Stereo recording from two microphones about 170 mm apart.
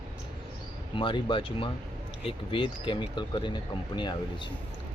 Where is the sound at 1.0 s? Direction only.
30° left (ahead or behind).